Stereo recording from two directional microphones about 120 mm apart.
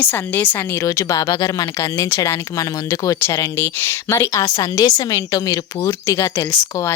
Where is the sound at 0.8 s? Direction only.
25° left (ahead or behind).